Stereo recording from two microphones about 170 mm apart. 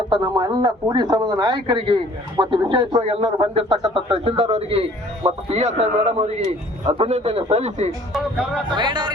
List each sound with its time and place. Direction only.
0.1 s speech: 25° right (ahead or behind); by 7.9 s 40° right (ahead or behind)
8.1 s speech: centre (ahead or behind)
8.7 s speech: 25° right (ahead or behind)